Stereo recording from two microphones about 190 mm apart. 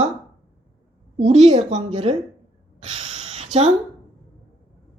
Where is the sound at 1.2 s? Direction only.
35° right (ahead or behind).